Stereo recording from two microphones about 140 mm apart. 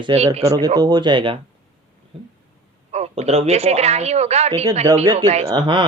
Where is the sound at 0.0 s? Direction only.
45° right (ahead or behind).